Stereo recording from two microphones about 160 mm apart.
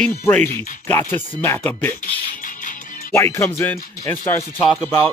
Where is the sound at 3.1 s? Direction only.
15° left (ahead or behind).